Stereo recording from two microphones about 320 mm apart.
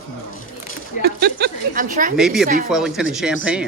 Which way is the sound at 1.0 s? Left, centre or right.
Right.